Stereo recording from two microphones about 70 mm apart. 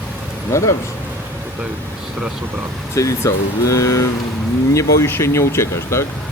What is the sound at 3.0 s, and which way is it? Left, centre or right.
Speech, left.